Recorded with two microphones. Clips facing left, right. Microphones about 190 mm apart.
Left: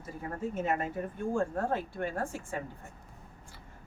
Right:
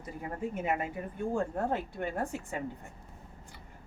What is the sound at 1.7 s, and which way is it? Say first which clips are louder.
Speech: even; 20° right (ahead or behind).